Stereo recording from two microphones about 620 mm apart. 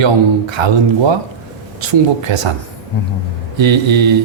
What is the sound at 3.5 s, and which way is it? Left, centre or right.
Speech, right.